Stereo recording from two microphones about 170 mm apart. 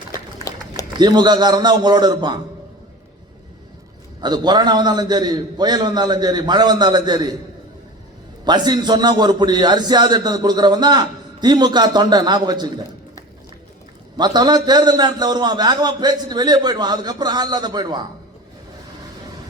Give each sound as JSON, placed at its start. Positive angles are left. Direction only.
{"t": 0.9, "sound": "a man's voice", "side_deg": -25}
{"t": 4.2, "sound": "a man's voice", "side_deg": -25}
{"t": 8.4, "sound": "a man's voice", "side_deg": -25}
{"t": 14.2, "sound": "a man's voice", "side_deg": -25}